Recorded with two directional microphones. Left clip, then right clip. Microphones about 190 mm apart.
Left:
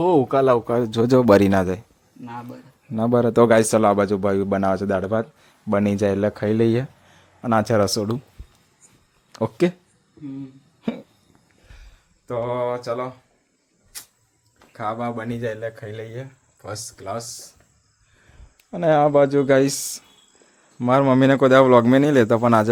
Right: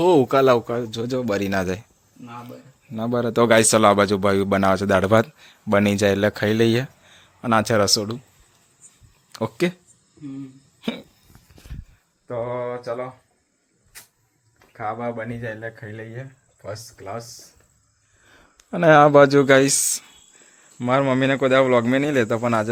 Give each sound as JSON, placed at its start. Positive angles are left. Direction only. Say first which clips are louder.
{"t": 0.0, "sound": "speech", "louder": "right 1 dB", "side_deg": -5}
{"t": 0.9, "sound": "speech", "louder": "left 9 dB", "side_deg": 35}
{"t": 1.6, "sound": "speech", "louder": "left 1 dB", "side_deg": 5}
{"t": 2.9, "sound": "speech", "louder": "left 4 dB", "side_deg": 15}
{"t": 4.9, "sound": "speech", "louder": "right 6 dB", "side_deg": -15}
{"t": 5.5, "sound": "speech", "louder": "right 2 dB", "side_deg": 0}
{"t": 9.3, "sound": "speech", "louder": "left 2 dB", "side_deg": 10}
{"t": 10.8, "sound": "a sound", "louder": "even", "side_deg": 5}
{"t": 12.3, "sound": "speech", "louder": "left 3 dB", "side_deg": 10}
{"t": 14.7, "sound": "speech", "louder": "left 1 dB", "side_deg": 10}
{"t": 18.7, "sound": "speech", "louder": "right 4 dB", "side_deg": -15}
{"t": 19.5, "sound": "speech", "louder": "right 2 dB", "side_deg": 5}